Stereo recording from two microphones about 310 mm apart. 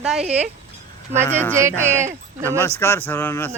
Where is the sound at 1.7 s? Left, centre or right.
Right.